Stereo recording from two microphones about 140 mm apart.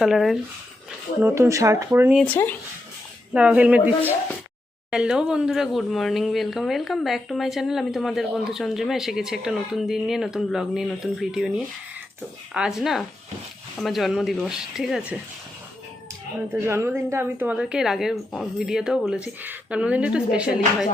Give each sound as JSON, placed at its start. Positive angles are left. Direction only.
{"t": 0.0, "sound": "speech", "side_deg": 0}
{"t": 1.2, "sound": "speech", "side_deg": -20}
{"t": 2.2, "sound": "speech", "side_deg": 15}
{"t": 3.3, "sound": "a woman's voice", "side_deg": -10}
{"t": 16.5, "sound": "a woman's voice", "side_deg": -20}